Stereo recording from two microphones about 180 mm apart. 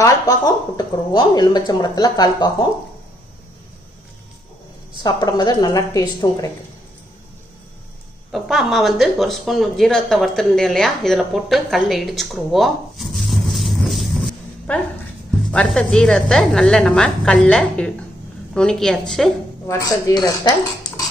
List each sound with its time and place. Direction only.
0.0 s speech: 20° left (ahead or behind)
5.0 s speech: 20° left (ahead or behind)
8.3 s a woman's voice: centre (ahead or behind)
19.7 s speech: 20° left (ahead or behind)